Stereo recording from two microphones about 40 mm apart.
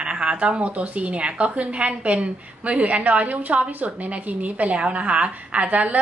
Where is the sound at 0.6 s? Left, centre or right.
Right.